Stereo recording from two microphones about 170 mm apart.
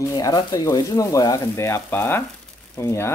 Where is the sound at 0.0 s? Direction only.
20° left (ahead or behind).